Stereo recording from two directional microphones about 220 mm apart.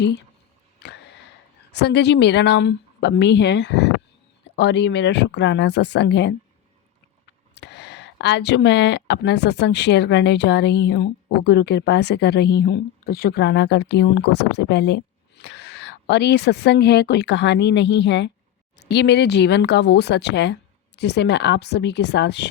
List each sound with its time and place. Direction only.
0.8 s a sound: 50° left (ahead or behind)
1.7 s speech: 50° left (ahead or behind)
7.5 s speech: 50° left (ahead or behind)